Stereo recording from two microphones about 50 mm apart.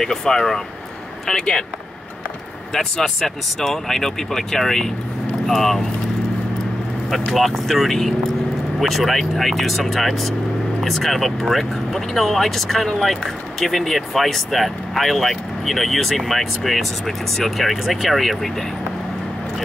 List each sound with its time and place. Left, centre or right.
0.0 s speech: centre
2.7 s speech: centre
7.1 s speech: centre